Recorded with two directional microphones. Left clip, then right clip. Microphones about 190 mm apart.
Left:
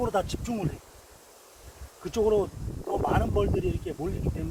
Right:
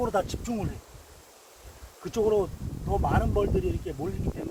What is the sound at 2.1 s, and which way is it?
Speech, 15° left (ahead or behind).